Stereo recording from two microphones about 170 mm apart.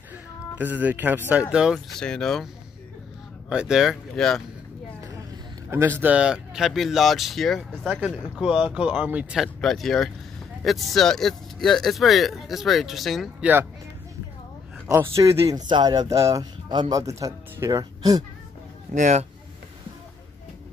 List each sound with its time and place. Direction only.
0.6 s speech: 10° right (ahead or behind)
5.7 s speech: 15° right (ahead or behind)
14.9 s speech: 15° right (ahead or behind)
18.9 s speech: 45° right (ahead or behind)